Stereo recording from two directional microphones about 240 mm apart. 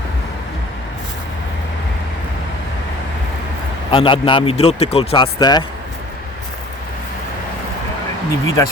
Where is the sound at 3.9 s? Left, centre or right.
Left.